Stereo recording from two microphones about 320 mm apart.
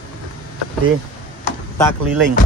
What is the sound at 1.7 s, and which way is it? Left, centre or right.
Speech, centre.